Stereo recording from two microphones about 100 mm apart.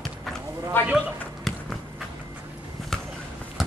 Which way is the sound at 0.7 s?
20° left (ahead or behind).